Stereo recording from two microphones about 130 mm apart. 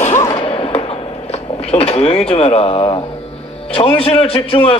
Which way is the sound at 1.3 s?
50° left (ahead or behind).